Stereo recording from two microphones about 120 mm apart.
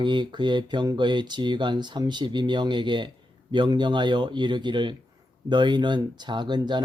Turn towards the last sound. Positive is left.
turn(degrees=-40)  # may be behind; listen again after turning